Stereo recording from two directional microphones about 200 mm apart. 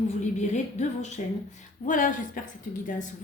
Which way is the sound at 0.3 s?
35° left (ahead or behind).